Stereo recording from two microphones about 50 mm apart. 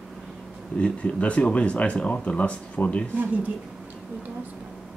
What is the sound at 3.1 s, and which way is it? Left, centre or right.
Speech, right.